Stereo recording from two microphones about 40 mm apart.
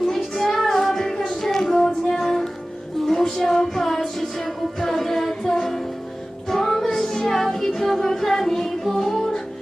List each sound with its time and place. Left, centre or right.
0.0 s child singing: centre
4.2 s music: centre